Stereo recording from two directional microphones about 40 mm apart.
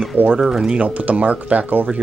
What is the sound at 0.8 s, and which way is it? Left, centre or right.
Speech, right.